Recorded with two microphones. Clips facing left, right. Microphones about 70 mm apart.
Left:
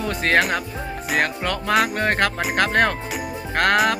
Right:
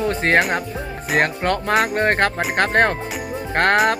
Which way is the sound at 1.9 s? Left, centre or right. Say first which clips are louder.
Right 3 dB; right.